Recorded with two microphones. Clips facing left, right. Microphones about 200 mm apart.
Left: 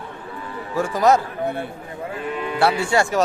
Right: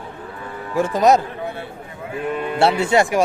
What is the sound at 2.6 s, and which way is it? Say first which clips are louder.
Speech: right 3 dB; 25° right (ahead or behind).